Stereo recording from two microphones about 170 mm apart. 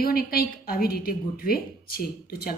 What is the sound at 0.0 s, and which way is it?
A woman's voice, 60° left (ahead or behind).